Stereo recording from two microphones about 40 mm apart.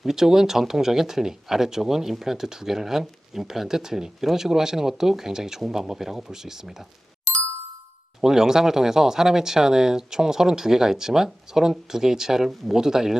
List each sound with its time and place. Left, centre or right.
0.0 s speech: centre
8.2 s speech: centre